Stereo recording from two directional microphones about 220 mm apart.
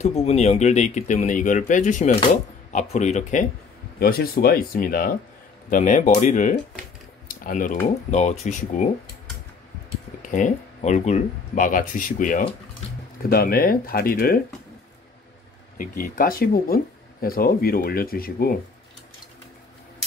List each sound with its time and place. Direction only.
0.0 s speech: 30° left (ahead or behind)
4.0 s speech: 45° left (ahead or behind)
7.2 s typing: 40° left (ahead or behind)
8.1 s speech: 30° left (ahead or behind)
10.2 s speech: 35° left (ahead or behind)
15.8 s speech: 40° left (ahead or behind)